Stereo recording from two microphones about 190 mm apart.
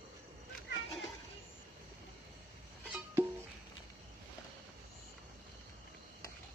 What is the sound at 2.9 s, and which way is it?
Music, 10° right (ahead or behind).